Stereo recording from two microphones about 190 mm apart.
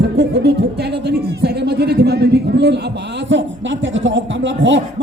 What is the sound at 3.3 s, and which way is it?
Speech, 75° right (ahead or behind).